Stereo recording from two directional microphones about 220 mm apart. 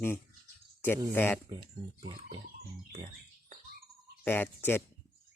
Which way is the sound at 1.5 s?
20° right (ahead or behind).